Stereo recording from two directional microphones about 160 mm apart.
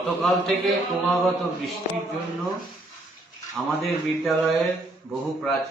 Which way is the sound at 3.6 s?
5° left (ahead or behind).